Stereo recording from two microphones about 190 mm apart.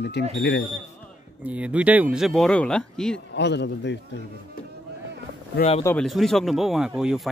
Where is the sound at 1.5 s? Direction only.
5° right (ahead or behind).